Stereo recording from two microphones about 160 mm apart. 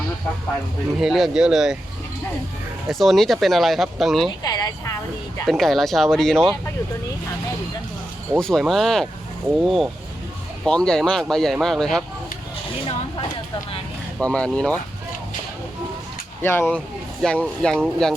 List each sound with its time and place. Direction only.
0.9 s speech: centre (ahead or behind)
2.9 s speech: centre (ahead or behind)
4.4 s a sound: 25° left (ahead or behind)
5.5 s speech: centre (ahead or behind)
8.4 s speech: 5° left (ahead or behind)
14.2 s speech: 5° left (ahead or behind)
16.4 s speech: 15° left (ahead or behind)